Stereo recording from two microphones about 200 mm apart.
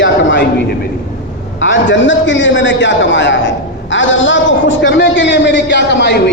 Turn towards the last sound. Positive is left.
turn(degrees=60)  # may be behind; listen again after turning